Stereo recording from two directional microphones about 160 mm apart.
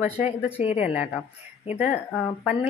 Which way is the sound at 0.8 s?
10° right (ahead or behind).